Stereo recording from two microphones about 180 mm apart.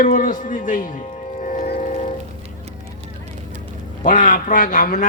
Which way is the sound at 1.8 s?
45° left (ahead or behind).